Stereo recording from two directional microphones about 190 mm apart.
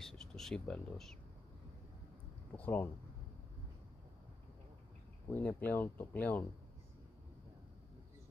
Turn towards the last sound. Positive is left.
turn(degrees=10)  # may be behind; listen again after turning